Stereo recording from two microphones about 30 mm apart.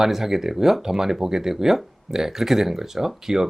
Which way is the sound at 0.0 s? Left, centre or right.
Centre.